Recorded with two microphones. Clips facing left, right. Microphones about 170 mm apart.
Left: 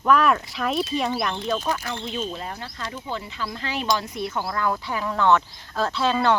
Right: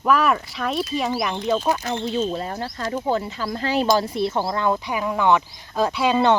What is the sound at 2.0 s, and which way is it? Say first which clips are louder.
Speech: right 7 dB; 35° right (ahead or behind).